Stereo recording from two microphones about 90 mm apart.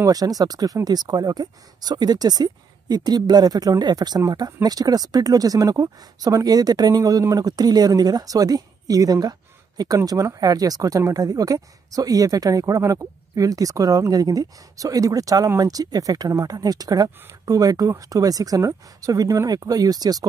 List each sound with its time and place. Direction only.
0.0 s speech: 45° right (ahead or behind)